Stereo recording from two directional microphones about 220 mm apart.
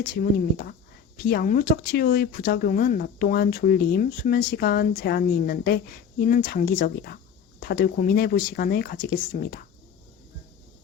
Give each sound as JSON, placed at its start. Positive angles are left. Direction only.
{"t": 0.3, "sound": "speech", "side_deg": 45}